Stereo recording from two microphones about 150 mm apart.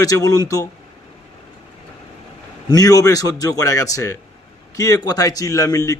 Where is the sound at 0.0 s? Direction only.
25° left (ahead or behind).